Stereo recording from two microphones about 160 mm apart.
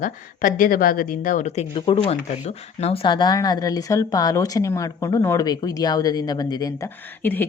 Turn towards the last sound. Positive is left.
turn(degrees=10)  # may be behind; listen again after turning